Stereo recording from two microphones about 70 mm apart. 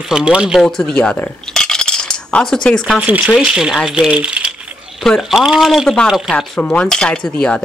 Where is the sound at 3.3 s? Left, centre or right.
Centre.